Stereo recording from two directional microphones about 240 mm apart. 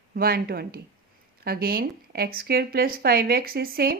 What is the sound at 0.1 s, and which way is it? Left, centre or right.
Speech, right.